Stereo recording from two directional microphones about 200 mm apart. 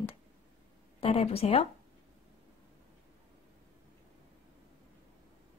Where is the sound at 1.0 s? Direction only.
30° left (ahead or behind).